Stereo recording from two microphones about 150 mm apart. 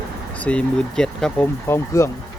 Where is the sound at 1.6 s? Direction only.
20° left (ahead or behind).